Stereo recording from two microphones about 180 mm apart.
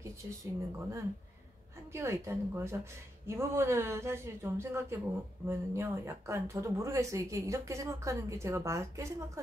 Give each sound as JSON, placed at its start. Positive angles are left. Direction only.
{"t": 0.7, "sound": "speech", "side_deg": -15}